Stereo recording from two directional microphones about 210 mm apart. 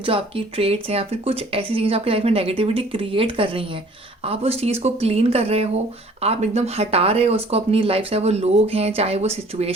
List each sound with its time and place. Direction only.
0.0 s speech: 25° right (ahead or behind)